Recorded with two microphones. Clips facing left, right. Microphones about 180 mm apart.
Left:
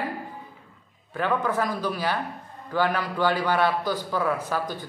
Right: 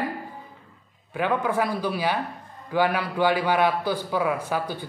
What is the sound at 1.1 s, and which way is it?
Speech, 10° right (ahead or behind).